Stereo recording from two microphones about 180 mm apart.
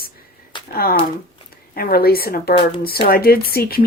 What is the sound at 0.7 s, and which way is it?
Speech, 55° left (ahead or behind).